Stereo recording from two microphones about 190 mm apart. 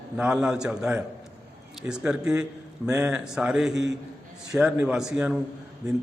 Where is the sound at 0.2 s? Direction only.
5° right (ahead or behind).